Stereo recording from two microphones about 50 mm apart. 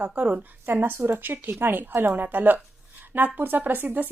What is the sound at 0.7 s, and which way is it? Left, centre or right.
A woman's voice, right.